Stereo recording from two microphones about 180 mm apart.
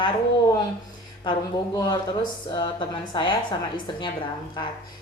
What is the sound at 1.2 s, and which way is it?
A woman's voice, 25° left (ahead or behind).